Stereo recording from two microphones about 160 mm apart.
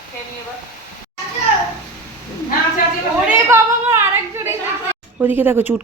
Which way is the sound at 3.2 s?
15° right (ahead or behind).